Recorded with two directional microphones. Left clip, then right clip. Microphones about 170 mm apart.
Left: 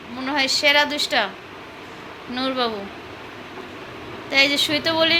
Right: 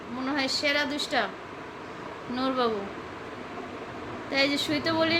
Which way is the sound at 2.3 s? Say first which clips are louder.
Left 4 dB; centre (ahead or behind).